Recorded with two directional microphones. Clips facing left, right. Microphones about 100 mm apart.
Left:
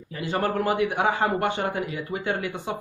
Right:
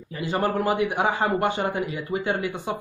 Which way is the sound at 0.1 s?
15° right (ahead or behind).